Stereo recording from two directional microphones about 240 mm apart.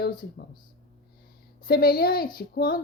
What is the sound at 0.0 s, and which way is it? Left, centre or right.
Speech, left.